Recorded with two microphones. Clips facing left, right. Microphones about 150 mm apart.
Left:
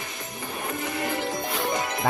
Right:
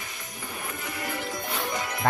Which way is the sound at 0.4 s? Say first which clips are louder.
Left 5 dB; 25° left (ahead or behind).